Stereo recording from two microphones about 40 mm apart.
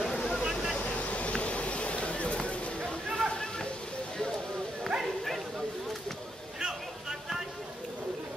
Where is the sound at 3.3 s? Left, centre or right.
Centre.